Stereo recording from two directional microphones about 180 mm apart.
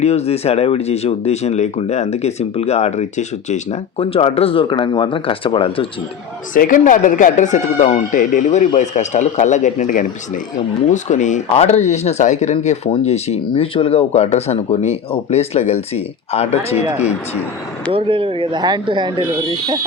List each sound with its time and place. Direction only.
0.0 s speech: 35° left (ahead or behind)
6.5 s speech: 45° left (ahead or behind)
17.9 s speech: 30° right (ahead or behind)